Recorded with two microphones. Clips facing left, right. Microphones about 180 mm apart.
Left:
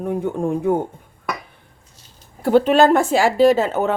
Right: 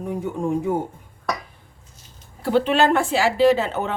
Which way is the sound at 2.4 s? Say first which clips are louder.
Left 5 dB; 45° left (ahead or behind).